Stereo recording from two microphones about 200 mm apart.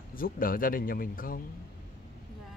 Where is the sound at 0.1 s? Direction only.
45° left (ahead or behind).